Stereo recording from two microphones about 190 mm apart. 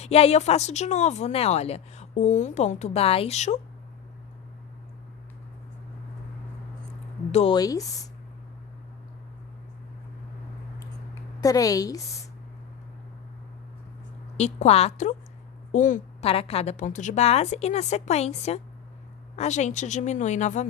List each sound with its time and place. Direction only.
0.0 s speech: 35° left (ahead or behind)
7.3 s speech: 35° left (ahead or behind)
7.5 s speech: 20° left (ahead or behind)
10.8 s a sound: 15° left (ahead or behind)
14.3 s speech: 35° left (ahead or behind)